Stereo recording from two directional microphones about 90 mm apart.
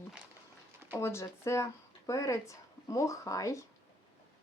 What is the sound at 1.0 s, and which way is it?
Speech, 30° left (ahead or behind).